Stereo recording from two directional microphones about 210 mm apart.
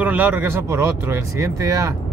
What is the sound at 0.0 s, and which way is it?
Speech, 10° right (ahead or behind).